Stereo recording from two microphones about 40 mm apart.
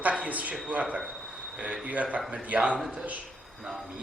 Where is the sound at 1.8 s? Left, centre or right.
Right.